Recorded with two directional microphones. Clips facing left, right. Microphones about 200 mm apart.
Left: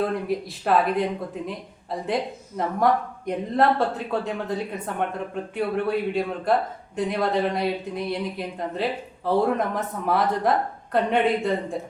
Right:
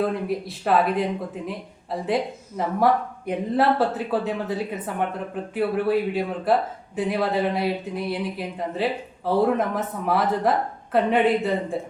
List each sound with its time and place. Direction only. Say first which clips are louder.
0.0 s speech: right 1 dB; centre (ahead or behind)